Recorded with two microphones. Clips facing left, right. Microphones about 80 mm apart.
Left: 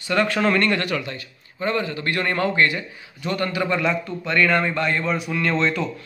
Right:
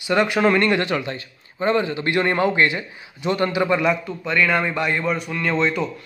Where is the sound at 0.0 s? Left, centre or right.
Centre.